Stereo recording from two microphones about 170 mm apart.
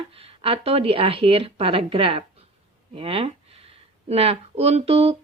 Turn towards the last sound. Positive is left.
turn(degrees=-35)  # may be behind; listen again after turning